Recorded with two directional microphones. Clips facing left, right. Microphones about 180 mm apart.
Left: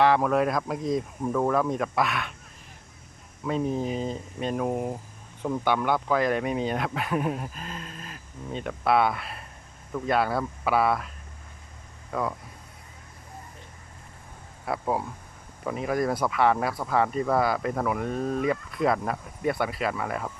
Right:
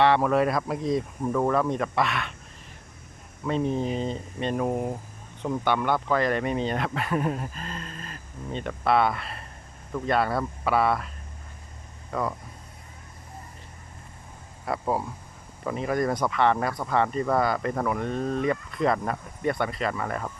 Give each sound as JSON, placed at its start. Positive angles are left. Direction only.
{"t": 0.0, "sound": "speech", "side_deg": 0}
{"t": 3.4, "sound": "speech", "side_deg": 5}
{"t": 12.1, "sound": "speech", "side_deg": 0}
{"t": 14.6, "sound": "speech", "side_deg": 0}